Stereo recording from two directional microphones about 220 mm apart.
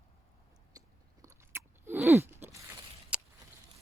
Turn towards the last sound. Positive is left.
turn(degrees=-5)  # may be behind; listen again after turning